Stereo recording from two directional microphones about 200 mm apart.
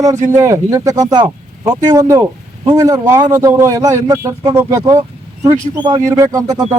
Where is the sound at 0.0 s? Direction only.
15° right (ahead or behind).